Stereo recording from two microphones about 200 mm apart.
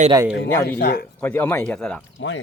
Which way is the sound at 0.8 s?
50° left (ahead or behind).